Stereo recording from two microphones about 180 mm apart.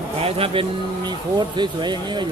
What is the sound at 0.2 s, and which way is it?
Speech, 35° right (ahead or behind).